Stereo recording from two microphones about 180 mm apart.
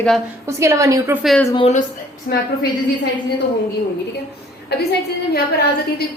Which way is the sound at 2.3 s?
55° left (ahead or behind).